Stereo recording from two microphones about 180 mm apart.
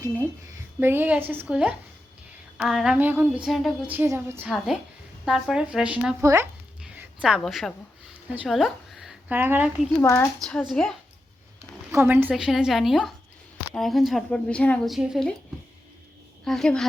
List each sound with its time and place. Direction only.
0.0 s a woman's voice: 15° right (ahead or behind)
4.4 s a woman's voice: centre (ahead or behind)
6.2 s a woman's voice: 15° right (ahead or behind)
6.8 s a woman's voice: 5° right (ahead or behind)
9.9 s a woman's voice: 15° left (ahead or behind)
11.9 s a woman's voice: 10° right (ahead or behind)
16.4 s a woman's voice: 5° left (ahead or behind)